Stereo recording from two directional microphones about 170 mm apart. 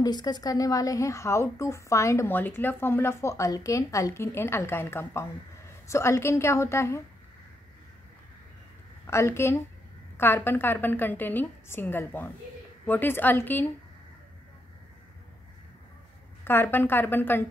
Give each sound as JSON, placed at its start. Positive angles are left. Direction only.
{"t": 0.0, "sound": "speech", "side_deg": 25}
{"t": 9.0, "sound": "a woman's voice", "side_deg": 15}
{"t": 16.4, "sound": "speech", "side_deg": 15}